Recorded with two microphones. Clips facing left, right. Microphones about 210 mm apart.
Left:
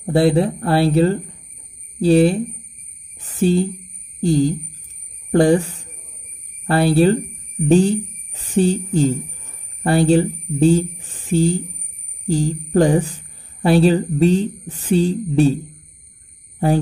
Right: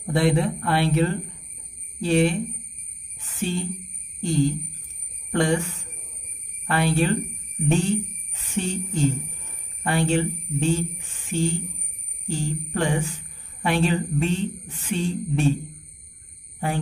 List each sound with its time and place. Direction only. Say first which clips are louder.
0.0 s music: left 6 dB; 35° left (ahead or behind)
3.2 s speech: left 11 dB; 35° left (ahead or behind)
4.2 s music: left 6 dB; 35° left (ahead or behind)
7.6 s speech: left 8 dB; 35° left (ahead or behind)
9.8 s music: left 8 dB; 35° left (ahead or behind)